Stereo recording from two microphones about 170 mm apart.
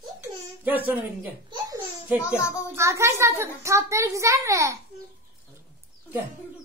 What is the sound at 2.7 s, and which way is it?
A child's voice, 15° right (ahead or behind).